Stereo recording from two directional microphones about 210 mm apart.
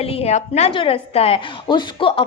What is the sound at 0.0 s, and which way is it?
A woman's voice, 30° left (ahead or behind).